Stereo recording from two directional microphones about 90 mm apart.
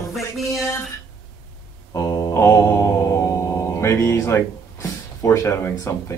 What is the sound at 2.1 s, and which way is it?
Mantra, 45° left (ahead or behind).